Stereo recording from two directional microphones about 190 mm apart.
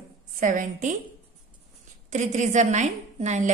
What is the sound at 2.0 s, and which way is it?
A woman's voice, 40° right (ahead or behind).